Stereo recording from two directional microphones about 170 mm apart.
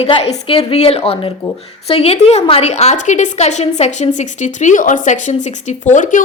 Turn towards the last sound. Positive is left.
turn(degrees=50)  # may be behind; listen again after turning